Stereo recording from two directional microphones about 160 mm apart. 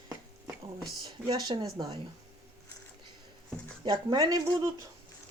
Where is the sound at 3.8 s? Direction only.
25° right (ahead or behind).